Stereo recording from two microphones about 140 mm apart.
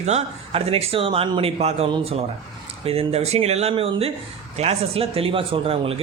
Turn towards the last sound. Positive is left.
turn(degrees=-40)  # may be behind; listen again after turning